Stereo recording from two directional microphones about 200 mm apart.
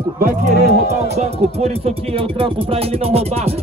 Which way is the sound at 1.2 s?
30° right (ahead or behind).